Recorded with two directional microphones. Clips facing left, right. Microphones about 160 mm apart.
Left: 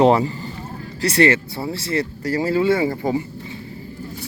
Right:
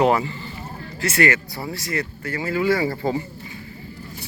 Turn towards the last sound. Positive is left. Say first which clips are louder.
# left 2 dB
turn(degrees=15)  # may be behind; listen again after turning